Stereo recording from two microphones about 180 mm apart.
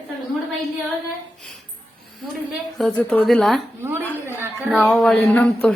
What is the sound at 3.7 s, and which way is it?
Speech, 10° right (ahead or behind).